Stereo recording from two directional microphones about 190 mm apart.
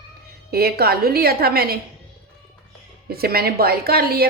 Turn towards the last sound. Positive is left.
turn(degrees=-55)  # may be behind; listen again after turning